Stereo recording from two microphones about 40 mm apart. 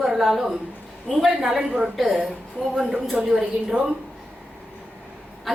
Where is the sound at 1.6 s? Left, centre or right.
Right.